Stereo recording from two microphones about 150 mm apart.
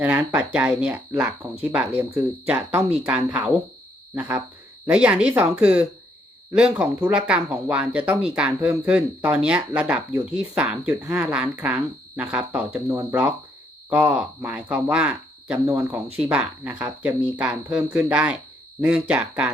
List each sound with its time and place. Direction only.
0.0 s speech: 10° right (ahead or behind)
12.9 s speech: 20° right (ahead or behind)